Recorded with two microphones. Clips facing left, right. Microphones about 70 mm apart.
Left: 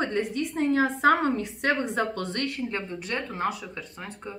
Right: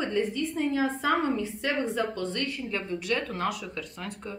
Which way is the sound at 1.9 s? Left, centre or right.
Left.